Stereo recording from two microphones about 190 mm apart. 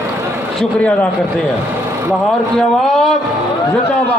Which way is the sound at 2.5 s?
Centre (ahead or behind).